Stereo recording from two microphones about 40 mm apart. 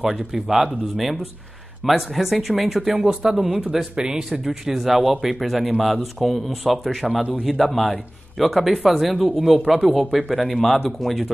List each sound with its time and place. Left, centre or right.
0.0 s speech: centre
3.1 s speech: right
3.3 s speech: centre
3.9 s speech: centre